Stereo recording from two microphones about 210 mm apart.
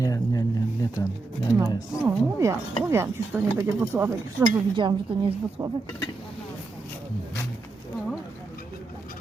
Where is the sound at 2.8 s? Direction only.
10° right (ahead or behind).